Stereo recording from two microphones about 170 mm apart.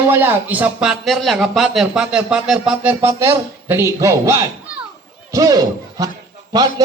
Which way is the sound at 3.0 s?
15° right (ahead or behind).